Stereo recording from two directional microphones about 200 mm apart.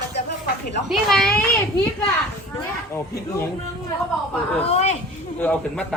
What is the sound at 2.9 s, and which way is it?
Speech, 15° left (ahead or behind).